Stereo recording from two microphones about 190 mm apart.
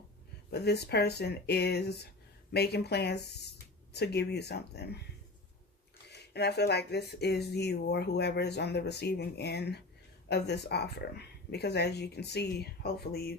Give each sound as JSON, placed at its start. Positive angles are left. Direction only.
{"t": 0.5, "sound": "speech", "side_deg": 60}
{"t": 6.1, "sound": "speech", "side_deg": 60}